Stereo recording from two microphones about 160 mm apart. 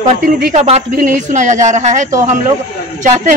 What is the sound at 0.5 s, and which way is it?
Speech, 45° right (ahead or behind).